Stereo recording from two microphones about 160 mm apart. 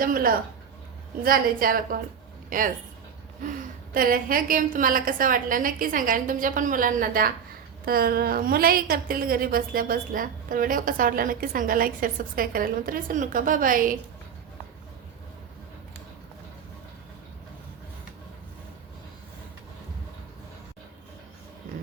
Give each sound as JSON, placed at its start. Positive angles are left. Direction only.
{"t": 0.0, "sound": "a woman's voice", "side_deg": -60}